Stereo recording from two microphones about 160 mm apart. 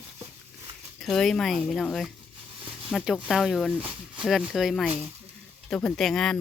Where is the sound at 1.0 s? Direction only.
5° left (ahead or behind).